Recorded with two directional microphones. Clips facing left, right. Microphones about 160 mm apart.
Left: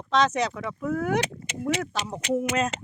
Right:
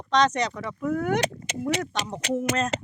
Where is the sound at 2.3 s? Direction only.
10° left (ahead or behind).